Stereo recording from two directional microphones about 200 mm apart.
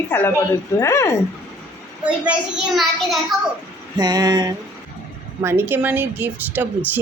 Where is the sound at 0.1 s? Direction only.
10° left (ahead or behind).